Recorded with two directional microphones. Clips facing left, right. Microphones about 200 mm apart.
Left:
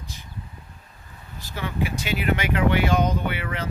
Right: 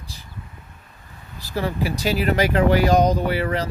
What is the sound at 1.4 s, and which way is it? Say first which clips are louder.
Speech: right 4 dB; 35° right (ahead or behind).